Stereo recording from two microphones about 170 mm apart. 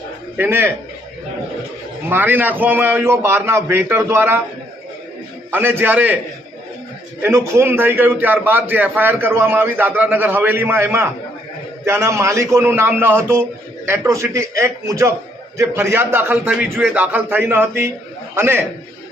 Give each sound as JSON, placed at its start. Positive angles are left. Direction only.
{"t": 0.3, "sound": "a man's voice", "side_deg": -10}
{"t": 2.0, "sound": "a man's voice", "side_deg": -10}
{"t": 5.5, "sound": "a man's voice", "side_deg": -10}
{"t": 7.2, "sound": "a man's voice", "side_deg": -15}